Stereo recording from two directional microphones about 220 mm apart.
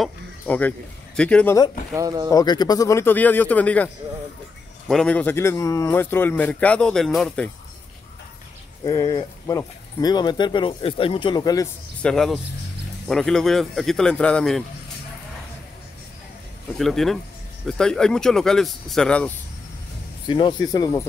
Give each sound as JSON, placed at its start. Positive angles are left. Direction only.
{"t": 0.0, "sound": "speech", "side_deg": 5}
{"t": 2.0, "sound": "speech", "side_deg": -15}
{"t": 2.3, "sound": "a man's voice", "side_deg": 20}
{"t": 8.8, "sound": "speech", "side_deg": 15}
{"t": 12.0, "sound": "speech", "side_deg": 5}
{"t": 16.7, "sound": "speech", "side_deg": 0}
{"t": 20.2, "sound": "a man's voice", "side_deg": 20}